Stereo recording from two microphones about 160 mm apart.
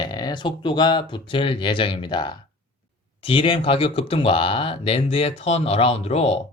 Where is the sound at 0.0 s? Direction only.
25° left (ahead or behind).